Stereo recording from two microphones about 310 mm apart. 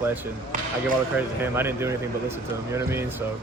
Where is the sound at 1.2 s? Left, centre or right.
Centre.